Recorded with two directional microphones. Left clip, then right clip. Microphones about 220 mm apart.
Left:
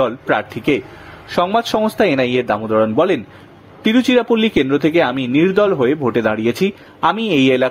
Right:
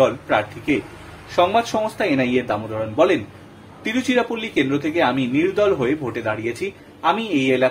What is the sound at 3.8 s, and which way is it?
Speech, 40° left (ahead or behind).